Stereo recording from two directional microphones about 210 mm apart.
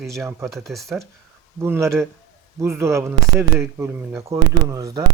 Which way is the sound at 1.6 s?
10° right (ahead or behind).